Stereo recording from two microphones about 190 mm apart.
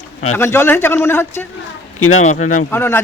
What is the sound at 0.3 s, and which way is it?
Speech, 10° left (ahead or behind).